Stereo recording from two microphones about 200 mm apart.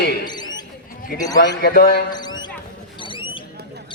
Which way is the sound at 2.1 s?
20° left (ahead or behind).